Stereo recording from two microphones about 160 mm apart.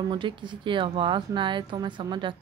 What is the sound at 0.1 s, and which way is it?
Speech, 30° right (ahead or behind).